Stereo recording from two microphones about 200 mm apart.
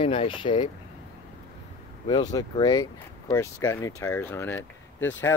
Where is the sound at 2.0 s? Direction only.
20° left (ahead or behind).